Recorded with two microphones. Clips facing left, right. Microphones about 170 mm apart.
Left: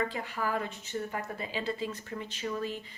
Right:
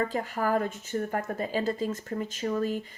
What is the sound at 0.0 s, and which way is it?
Speech, 45° right (ahead or behind).